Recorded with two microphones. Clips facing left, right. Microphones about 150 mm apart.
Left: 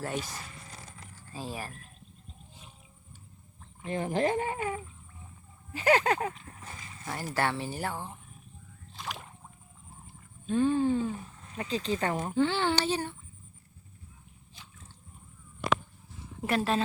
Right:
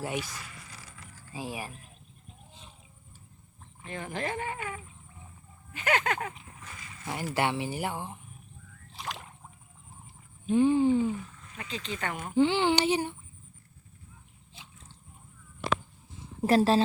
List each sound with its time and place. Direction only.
0.2 s zipper: 35° left (ahead or behind)
1.3 s speech: 15° right (ahead or behind)
3.8 s speech: 35° left (ahead or behind)
7.0 s speech: 15° right (ahead or behind)
10.4 s speech: 15° right (ahead or behind)
11.5 s speech: 35° left (ahead or behind)
12.3 s speech: 15° right (ahead or behind)
16.4 s speech: 35° right (ahead or behind)